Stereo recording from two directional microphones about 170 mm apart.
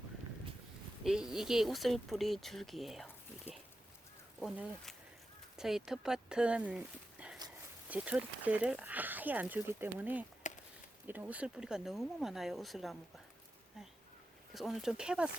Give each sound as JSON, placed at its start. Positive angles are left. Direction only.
{"t": 1.0, "sound": "speech", "side_deg": -5}
{"t": 4.4, "sound": "speech", "side_deg": -5}
{"t": 10.4, "sound": "a sound", "side_deg": 45}
{"t": 11.0, "sound": "speech", "side_deg": -10}
{"t": 14.5, "sound": "speech", "side_deg": 0}